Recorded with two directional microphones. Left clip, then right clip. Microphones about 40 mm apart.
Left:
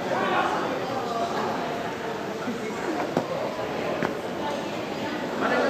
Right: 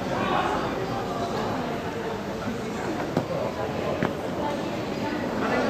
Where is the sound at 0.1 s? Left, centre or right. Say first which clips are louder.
Left 1 dB; left.